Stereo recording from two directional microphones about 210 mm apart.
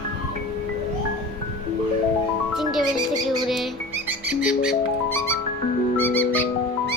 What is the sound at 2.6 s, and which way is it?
Music, centre (ahead or behind).